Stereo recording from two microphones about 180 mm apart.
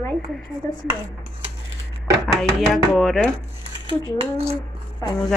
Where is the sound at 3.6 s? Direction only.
30° right (ahead or behind).